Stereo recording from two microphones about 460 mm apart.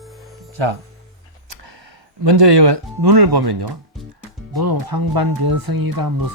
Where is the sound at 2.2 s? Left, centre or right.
Right.